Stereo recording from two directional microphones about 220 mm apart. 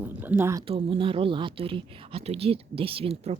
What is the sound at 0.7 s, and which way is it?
Speech, 25° right (ahead or behind).